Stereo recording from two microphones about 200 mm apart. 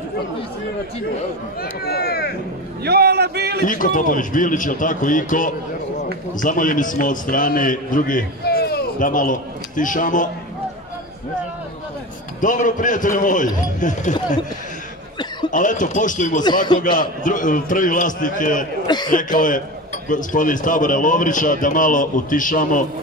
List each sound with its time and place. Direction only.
1.6 s speech: 50° left (ahead or behind)
2.8 s a man's voice: 55° right (ahead or behind)
3.6 s a man's voice: 40° left (ahead or behind)
12.4 s a man's voice: 40° left (ahead or behind)
15.5 s a man's voice: 40° left (ahead or behind)